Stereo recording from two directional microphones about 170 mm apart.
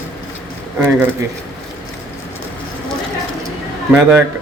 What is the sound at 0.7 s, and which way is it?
Speech, 10° right (ahead or behind).